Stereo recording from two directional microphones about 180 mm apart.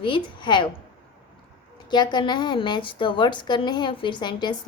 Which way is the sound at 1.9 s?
25° left (ahead or behind).